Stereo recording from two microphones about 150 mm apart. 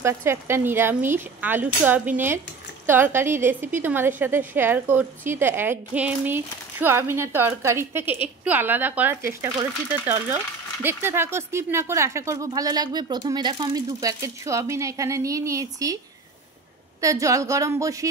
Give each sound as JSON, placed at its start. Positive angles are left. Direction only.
{"t": 0.0, "sound": "a woman's voice", "side_deg": -15}
{"t": 17.0, "sound": "speech", "side_deg": -20}